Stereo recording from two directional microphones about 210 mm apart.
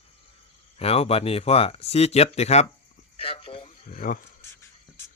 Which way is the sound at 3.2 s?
25° left (ahead or behind).